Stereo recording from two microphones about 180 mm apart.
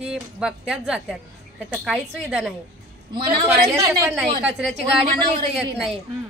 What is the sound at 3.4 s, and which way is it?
Speech, 15° right (ahead or behind).